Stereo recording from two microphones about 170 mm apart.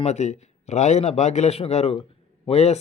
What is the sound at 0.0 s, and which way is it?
A man's voice, 40° left (ahead or behind).